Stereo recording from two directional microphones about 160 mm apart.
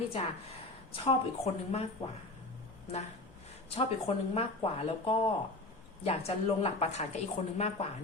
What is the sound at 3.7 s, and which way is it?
A woman's voice, 40° left (ahead or behind).